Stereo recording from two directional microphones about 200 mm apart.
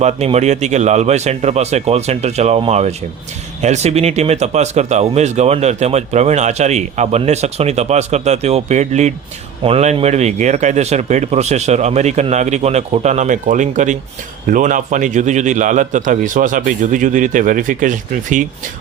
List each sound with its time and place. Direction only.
0.0 s speech: 35° right (ahead or behind)